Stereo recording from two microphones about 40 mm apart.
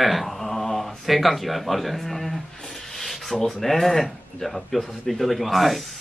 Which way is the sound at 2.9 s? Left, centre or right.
Centre.